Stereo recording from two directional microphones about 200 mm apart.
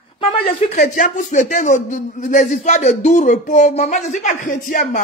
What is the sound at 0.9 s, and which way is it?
A man's voice, 40° left (ahead or behind).